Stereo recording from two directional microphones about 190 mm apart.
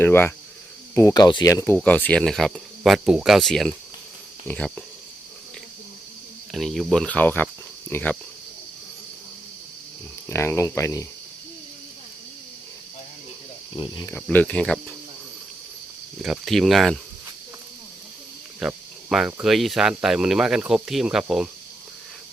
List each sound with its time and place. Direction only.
0.0 s speech: 10° left (ahead or behind)
0.9 s cricket: 20° left (ahead or behind)
1.6 s speech: 10° left (ahead or behind)
6.5 s speech: centre (ahead or behind)
10.2 s speech: 15° left (ahead or behind)
13.7 s cricket: 25° left (ahead or behind)
14.1 s speech: 5° left (ahead or behind)
16.2 s speech: centre (ahead or behind)
18.6 s speech: 5° right (ahead or behind)